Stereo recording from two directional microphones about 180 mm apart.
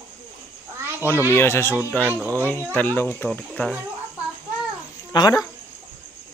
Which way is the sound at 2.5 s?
10° left (ahead or behind).